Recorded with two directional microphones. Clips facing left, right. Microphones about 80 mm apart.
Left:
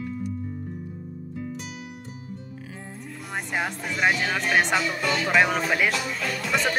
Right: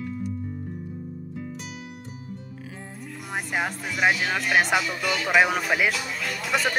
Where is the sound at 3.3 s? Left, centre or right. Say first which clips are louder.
Right 1 dB; centre.